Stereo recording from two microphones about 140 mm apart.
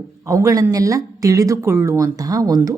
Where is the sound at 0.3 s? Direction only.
25° right (ahead or behind).